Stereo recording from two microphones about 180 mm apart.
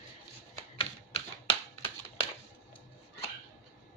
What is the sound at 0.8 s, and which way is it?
Typewriter, 30° left (ahead or behind).